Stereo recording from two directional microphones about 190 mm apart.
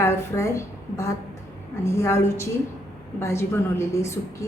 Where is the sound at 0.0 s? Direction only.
15° left (ahead or behind).